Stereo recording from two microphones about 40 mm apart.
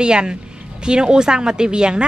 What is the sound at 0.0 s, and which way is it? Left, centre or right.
Speech, right.